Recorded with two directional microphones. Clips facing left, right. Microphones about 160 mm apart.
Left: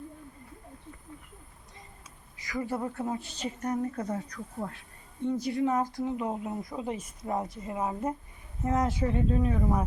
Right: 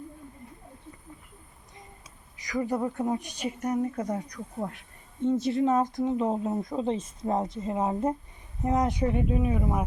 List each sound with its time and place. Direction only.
2.3 s a woman's voice: 20° right (ahead or behind)